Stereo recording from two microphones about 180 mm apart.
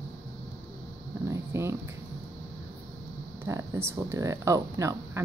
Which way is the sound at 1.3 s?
15° right (ahead or behind).